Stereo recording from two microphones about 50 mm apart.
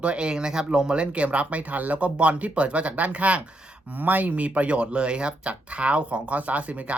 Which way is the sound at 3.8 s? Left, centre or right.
Right.